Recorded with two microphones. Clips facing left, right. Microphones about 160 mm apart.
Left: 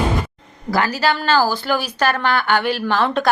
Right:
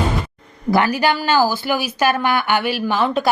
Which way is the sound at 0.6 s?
20° right (ahead or behind).